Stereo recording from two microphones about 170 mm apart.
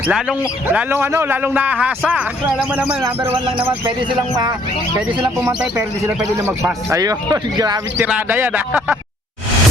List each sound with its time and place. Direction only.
0.0 s speech: 5° right (ahead or behind)
3.2 s bird: 30° right (ahead or behind)
6.4 s speech: 15° right (ahead or behind)
7.9 s speech: 10° right (ahead or behind)